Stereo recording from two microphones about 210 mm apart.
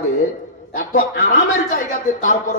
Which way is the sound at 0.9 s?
40° left (ahead or behind).